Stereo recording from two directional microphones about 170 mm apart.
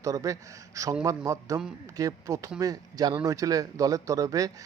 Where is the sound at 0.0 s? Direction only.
20° right (ahead or behind).